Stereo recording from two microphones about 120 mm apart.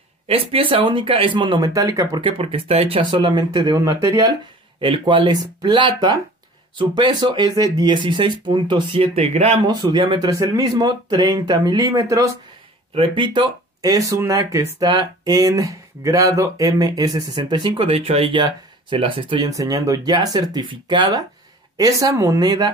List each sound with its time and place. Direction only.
0.3 s speech: 50° right (ahead or behind)
1.7 s speech: 30° right (ahead or behind)
2.2 s speech: 50° right (ahead or behind)
3.1 s speech: 40° right (ahead or behind)
4.7 s speech: 45° right (ahead or behind); by 9.6 s 65° right (ahead or behind)
9.6 s speech: 35° right (ahead or behind)
12.9 s speech: 45° right (ahead or behind)
13.7 s speech: 30° right (ahead or behind)
19.5 s speech: 30° right (ahead or behind)